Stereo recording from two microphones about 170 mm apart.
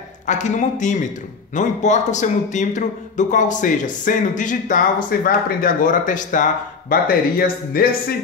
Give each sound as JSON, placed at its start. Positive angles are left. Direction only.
{"t": 0.3, "sound": "a man's voice", "side_deg": 45}